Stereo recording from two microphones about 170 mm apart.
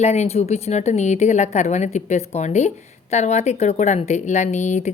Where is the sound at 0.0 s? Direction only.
40° left (ahead or behind).